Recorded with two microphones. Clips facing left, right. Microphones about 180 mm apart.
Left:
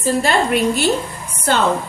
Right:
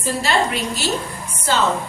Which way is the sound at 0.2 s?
55° left (ahead or behind).